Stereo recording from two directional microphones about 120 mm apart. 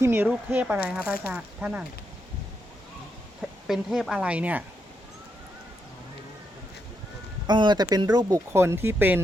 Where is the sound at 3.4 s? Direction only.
Centre (ahead or behind).